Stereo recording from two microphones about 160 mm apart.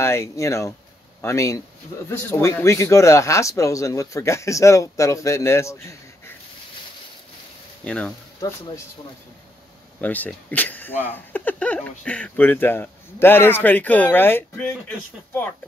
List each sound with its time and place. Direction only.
0.0 s speech: 15° left (ahead or behind)
7.8 s speech: 5° left (ahead or behind)
9.9 s speech: 10° left (ahead or behind)